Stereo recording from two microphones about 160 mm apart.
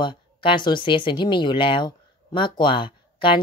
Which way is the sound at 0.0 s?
30° left (ahead or behind).